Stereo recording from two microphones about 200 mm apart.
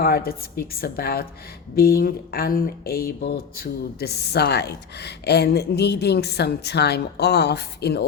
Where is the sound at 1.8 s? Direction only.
50° left (ahead or behind).